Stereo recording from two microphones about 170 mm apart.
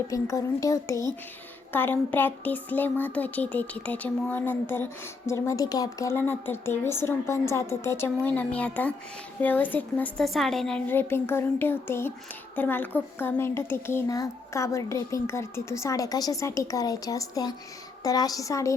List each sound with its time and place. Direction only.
0.1 s speech: 20° left (ahead or behind)